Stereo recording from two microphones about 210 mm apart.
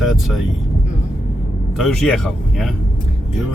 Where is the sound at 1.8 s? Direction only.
5° left (ahead or behind).